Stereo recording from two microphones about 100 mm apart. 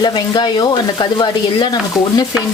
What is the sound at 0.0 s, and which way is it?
Stir, 45° left (ahead or behind).